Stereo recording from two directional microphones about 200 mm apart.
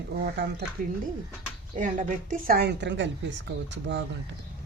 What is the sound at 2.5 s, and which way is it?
Speech, 55° right (ahead or behind).